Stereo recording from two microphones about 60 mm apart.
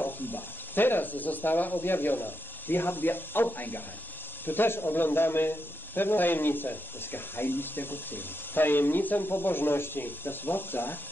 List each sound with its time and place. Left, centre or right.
0.0 s a man's voice: left